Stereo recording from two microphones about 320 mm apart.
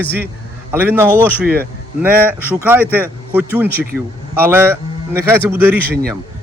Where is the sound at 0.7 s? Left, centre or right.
Centre.